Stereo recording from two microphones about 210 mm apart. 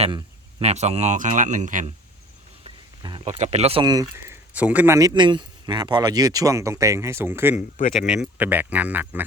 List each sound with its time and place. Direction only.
0.6 s speech: 30° right (ahead or behind)
2.6 s speech: 25° right (ahead or behind)